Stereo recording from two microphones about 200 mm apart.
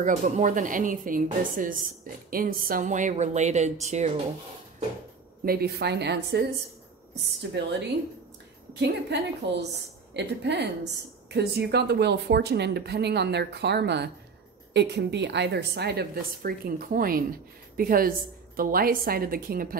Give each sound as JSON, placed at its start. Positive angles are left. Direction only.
{"t": 0.0, "sound": "a woman's voice", "side_deg": -40}
{"t": 5.4, "sound": "speech", "side_deg": -50}
{"t": 7.6, "sound": "speech", "side_deg": -60}
{"t": 8.7, "sound": "a woman's voice", "side_deg": -55}